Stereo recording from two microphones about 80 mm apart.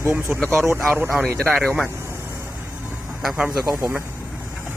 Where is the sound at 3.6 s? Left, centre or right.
Right.